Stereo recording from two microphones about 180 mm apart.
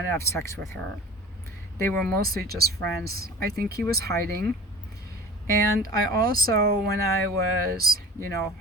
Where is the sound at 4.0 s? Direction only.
60° right (ahead or behind).